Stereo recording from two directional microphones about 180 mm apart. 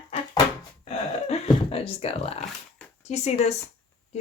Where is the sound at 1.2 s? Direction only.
35° left (ahead or behind).